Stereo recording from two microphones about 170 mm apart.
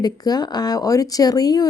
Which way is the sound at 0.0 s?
25° left (ahead or behind).